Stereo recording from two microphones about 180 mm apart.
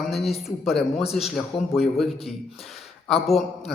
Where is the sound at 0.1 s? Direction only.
Centre (ahead or behind).